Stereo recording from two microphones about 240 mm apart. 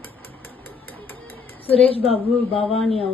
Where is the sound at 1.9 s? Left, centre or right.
Left.